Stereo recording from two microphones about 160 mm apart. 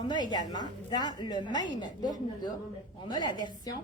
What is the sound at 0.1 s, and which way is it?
A woman's voice, 25° left (ahead or behind).